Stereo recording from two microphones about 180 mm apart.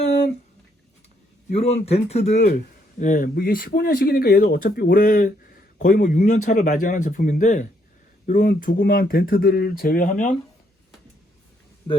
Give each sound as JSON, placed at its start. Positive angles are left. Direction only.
{"t": 1.5, "sound": "speech", "side_deg": 35}
{"t": 8.4, "sound": "speech", "side_deg": 60}